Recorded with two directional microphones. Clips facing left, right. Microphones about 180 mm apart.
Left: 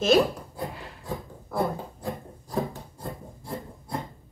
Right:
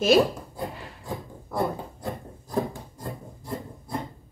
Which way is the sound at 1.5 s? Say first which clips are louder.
Even; centre (ahead or behind).